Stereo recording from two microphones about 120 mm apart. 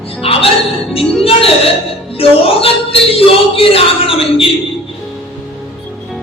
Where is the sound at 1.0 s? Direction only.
5° left (ahead or behind).